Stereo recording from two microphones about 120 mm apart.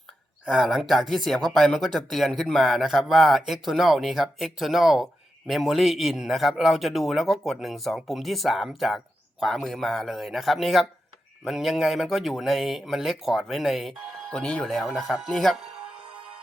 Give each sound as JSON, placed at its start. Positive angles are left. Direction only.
{"t": 0.4, "sound": "speech", "side_deg": 0}